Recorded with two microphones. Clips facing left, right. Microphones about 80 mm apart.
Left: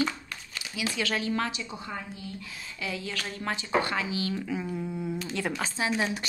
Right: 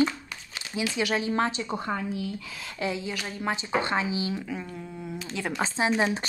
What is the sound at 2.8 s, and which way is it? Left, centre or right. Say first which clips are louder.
Speech: right 4 dB; right.